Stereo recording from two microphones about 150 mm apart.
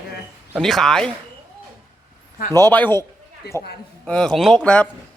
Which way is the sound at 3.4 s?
90° left.